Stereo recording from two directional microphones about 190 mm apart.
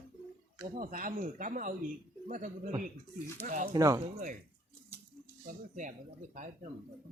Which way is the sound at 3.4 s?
40° right (ahead or behind).